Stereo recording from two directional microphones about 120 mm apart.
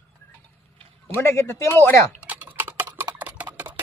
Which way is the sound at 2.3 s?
15° right (ahead or behind).